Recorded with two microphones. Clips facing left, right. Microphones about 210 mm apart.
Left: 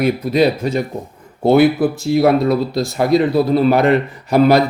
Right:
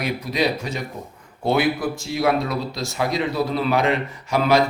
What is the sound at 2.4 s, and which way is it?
Speech, 55° left (ahead or behind).